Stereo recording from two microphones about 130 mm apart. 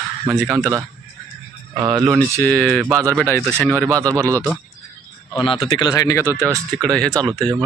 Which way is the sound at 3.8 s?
25° right (ahead or behind).